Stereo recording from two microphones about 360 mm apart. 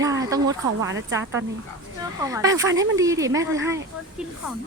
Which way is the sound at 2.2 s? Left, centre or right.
Centre.